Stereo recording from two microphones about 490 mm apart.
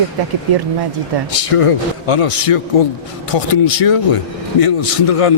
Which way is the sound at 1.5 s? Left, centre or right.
Left.